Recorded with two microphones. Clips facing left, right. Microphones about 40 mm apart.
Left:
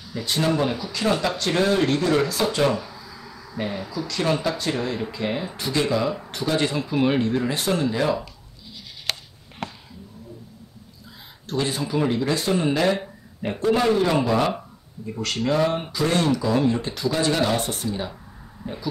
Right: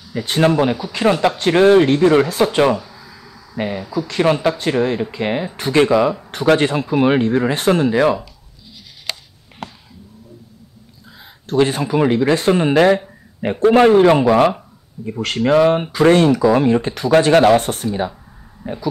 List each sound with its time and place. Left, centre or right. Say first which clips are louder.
0.1 s speech: right 7 dB; right
2.8 s a sound: even; centre
4.1 s speech: right 7 dB; right
5.9 s speech: right 8 dB; right
6.6 s speech: right 6 dB; right
11.4 s speech: right 9 dB; right
18.6 s speech: right 6 dB; right